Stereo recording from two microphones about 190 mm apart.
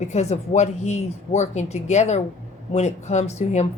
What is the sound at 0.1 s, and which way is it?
A woman's voice, 35° left (ahead or behind).